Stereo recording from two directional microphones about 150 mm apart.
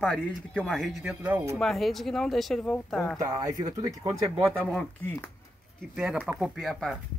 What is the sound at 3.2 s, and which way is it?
Speech, 20° right (ahead or behind).